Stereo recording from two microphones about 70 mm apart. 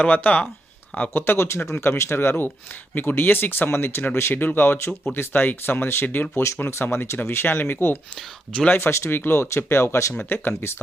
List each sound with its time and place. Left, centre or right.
0.0 s speech: centre
6.3 s speech: left